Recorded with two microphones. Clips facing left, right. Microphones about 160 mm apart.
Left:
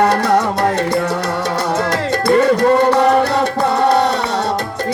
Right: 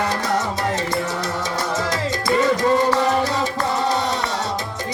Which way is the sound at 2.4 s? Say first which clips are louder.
Left 5 dB; 60° left (ahead or behind).